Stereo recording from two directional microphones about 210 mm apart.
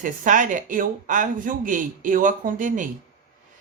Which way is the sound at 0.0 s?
40° right (ahead or behind).